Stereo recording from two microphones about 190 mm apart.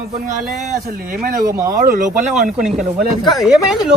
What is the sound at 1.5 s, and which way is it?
Speech, 15° right (ahead or behind).